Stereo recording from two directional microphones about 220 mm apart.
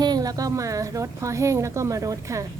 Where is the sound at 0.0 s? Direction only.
15° right (ahead or behind).